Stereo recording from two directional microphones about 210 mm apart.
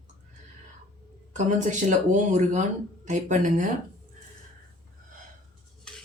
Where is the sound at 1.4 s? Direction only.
35° right (ahead or behind).